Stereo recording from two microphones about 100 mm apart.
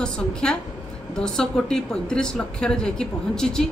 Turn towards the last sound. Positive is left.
turn(degrees=5)  # may be behind; listen again after turning